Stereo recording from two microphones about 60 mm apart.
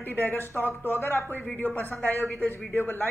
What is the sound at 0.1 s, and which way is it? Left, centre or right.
Speech, left.